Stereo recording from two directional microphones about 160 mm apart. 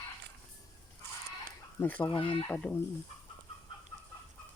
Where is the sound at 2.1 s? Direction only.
30° left (ahead or behind).